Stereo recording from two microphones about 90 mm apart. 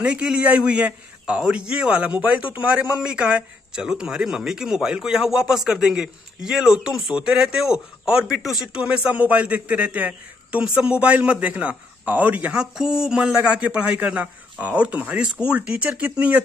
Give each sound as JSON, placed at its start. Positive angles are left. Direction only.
{"t": 0.0, "sound": "a man's voice", "side_deg": -10}